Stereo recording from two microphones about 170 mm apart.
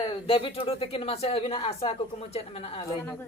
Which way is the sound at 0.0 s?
35° left (ahead or behind).